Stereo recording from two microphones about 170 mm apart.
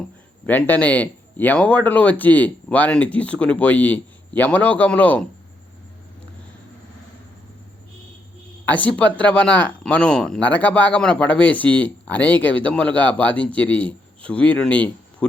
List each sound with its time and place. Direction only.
0.4 s speech: 10° left (ahead or behind)
8.6 s speech: 10° left (ahead or behind)